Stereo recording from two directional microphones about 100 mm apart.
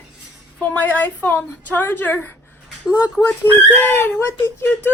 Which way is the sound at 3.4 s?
25° left (ahead or behind).